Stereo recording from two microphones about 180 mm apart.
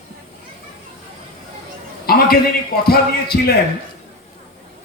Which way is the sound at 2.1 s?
55° left (ahead or behind).